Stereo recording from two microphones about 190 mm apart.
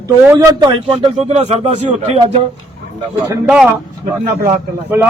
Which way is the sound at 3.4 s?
5° right (ahead or behind).